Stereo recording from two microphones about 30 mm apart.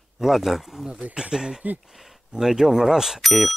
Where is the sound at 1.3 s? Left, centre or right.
Right.